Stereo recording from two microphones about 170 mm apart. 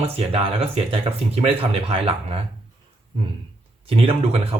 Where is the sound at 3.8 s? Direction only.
35° right (ahead or behind).